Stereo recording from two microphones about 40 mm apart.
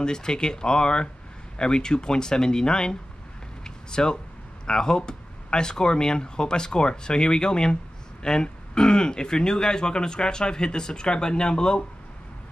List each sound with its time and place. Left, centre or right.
0.0 s speech: centre
3.6 s a sound: centre
4.6 s speech: centre